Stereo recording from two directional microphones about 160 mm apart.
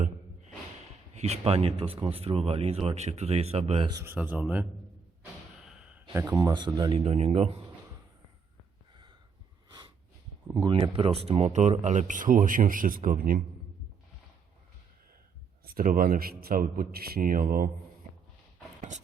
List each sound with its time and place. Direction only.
1.1 s speech: 40° right (ahead or behind)
4.0 s speech: 10° right (ahead or behind)
6.1 s speech: 20° right (ahead or behind)
7.0 s speech: 35° right (ahead or behind)
10.7 s a man's voice: 35° right (ahead or behind); by 13.4 s 60° right (ahead or behind)
15.6 s a man's voice: 60° right (ahead or behind)
18.8 s a sound: 50° right (ahead or behind)